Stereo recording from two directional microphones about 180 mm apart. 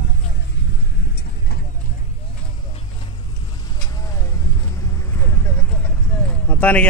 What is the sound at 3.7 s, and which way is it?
Vehicle, 15° left (ahead or behind).